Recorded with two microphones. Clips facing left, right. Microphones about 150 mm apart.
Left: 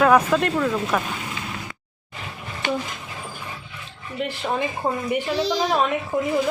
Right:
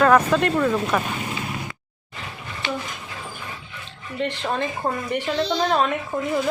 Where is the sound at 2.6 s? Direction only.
45° left (ahead or behind).